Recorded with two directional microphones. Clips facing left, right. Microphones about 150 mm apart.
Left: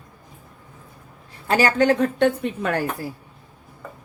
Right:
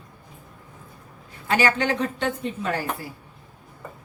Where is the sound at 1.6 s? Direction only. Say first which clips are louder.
Left 6 dB; 40° left (ahead or behind); by 2.8 s 60° left (ahead or behind).